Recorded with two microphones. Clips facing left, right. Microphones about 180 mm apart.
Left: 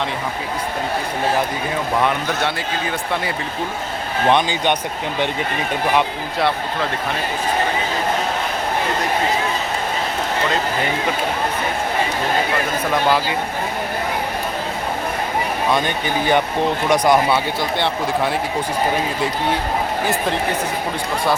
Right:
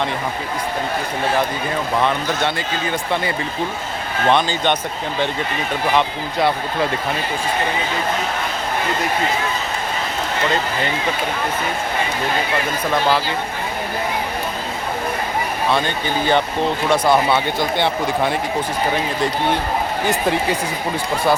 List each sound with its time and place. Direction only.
2.0 s speech: 5° left (ahead or behind)
4.3 s speech: 15° left (ahead or behind)
12.9 s speech: 15° left (ahead or behind)
15.7 s speech: 15° left (ahead or behind)